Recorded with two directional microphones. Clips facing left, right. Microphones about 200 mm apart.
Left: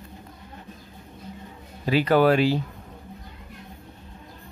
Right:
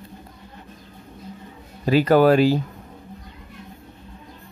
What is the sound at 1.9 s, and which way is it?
Speech, 45° right (ahead or behind).